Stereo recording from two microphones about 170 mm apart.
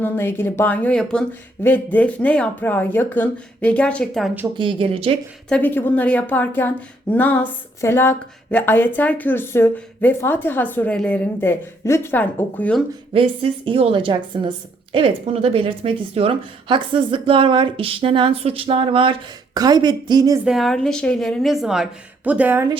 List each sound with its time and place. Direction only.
0.0 s speech: 10° left (ahead or behind)
4.5 s a woman's voice: 30° right (ahead or behind)
5.5 s speech: 10° left (ahead or behind)
13.1 s a woman's voice: 35° right (ahead or behind)
20.4 s a woman's voice: centre (ahead or behind)